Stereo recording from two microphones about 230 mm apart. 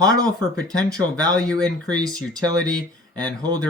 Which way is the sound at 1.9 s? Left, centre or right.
Centre.